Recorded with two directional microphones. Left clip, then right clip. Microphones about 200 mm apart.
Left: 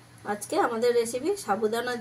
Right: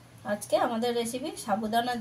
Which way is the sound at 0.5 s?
15° left (ahead or behind).